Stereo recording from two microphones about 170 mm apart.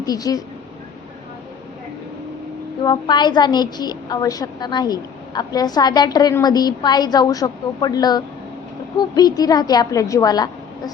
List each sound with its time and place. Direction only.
0.0 s a woman's voice: 20° left (ahead or behind)
2.8 s a woman's voice: 25° left (ahead or behind)